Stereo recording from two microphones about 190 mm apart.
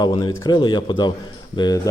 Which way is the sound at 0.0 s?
20° left (ahead or behind).